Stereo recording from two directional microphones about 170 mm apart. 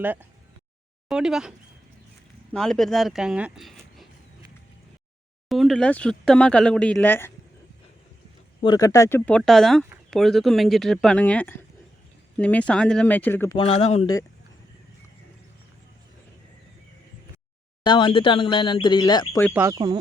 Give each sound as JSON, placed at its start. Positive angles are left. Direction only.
{"t": 0.0, "sound": "speech", "side_deg": -10}
{"t": 5.5, "sound": "speech", "side_deg": 0}
{"t": 8.6, "sound": "speech", "side_deg": 20}
{"t": 13.6, "sound": "speech", "side_deg": 35}
{"t": 17.8, "sound": "speech", "side_deg": 30}
{"t": 19.5, "sound": "speech", "side_deg": -10}
{"t": 19.7, "sound": "speech", "side_deg": -25}